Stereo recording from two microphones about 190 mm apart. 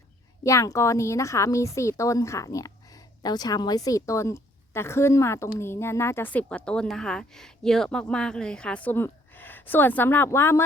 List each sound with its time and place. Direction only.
0.4 s a woman's voice: 15° left (ahead or behind)